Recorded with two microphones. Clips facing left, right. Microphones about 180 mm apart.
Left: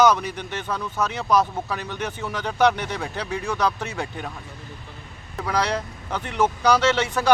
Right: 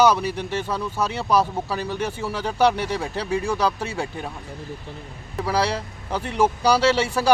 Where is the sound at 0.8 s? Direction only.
10° right (ahead or behind).